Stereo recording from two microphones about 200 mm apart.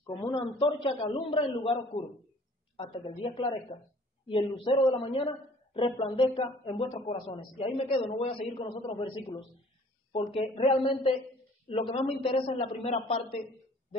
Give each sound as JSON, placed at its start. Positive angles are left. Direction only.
{"t": 0.0, "sound": "a woman's voice", "side_deg": 25}